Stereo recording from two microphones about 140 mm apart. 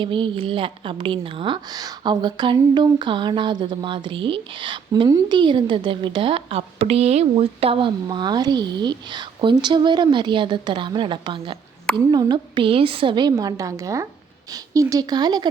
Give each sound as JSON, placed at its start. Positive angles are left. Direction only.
{"t": 0.0, "sound": "a woman's voice", "side_deg": -35}